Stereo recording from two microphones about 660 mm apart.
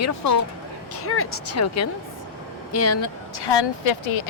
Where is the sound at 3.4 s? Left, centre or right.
Left.